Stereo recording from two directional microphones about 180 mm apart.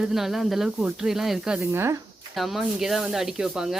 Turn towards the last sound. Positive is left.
turn(degrees=-5)  # may be behind; listen again after turning